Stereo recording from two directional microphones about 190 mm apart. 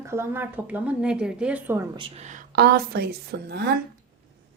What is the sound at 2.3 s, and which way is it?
A woman's voice, 55° right (ahead or behind).